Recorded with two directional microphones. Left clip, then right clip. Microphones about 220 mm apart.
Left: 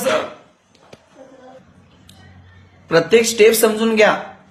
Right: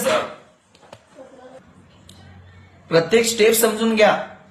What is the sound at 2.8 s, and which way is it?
A man's voice, 25° left (ahead or behind).